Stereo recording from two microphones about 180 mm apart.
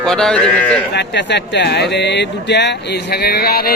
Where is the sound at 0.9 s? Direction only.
75° left (ahead or behind).